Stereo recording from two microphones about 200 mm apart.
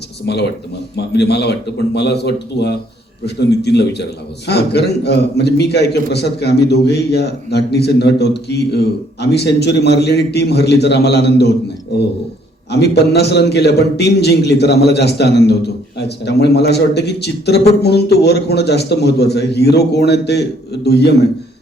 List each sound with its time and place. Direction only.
0.9 s a man's voice: 55° left (ahead or behind)
12.7 s a man's voice: 55° left (ahead or behind)